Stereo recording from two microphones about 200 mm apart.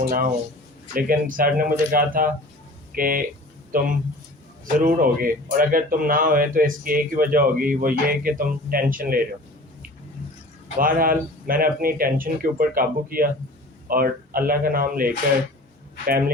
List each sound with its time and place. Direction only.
0.9 s a man's voice: 45° right (ahead or behind)
10.8 s a man's voice: 45° right (ahead or behind)